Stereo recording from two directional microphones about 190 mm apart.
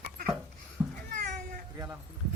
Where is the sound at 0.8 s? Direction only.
Centre (ahead or behind).